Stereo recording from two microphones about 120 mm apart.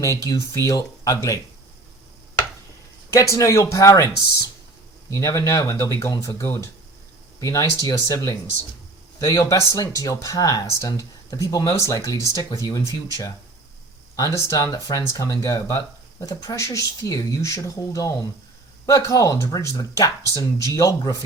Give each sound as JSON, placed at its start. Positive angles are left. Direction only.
{"t": 0.0, "sound": "speech", "side_deg": 25}
{"t": 3.1, "sound": "speech", "side_deg": 25}
{"t": 5.1, "sound": "speech", "side_deg": 25}
{"t": 14.3, "sound": "speech", "side_deg": 30}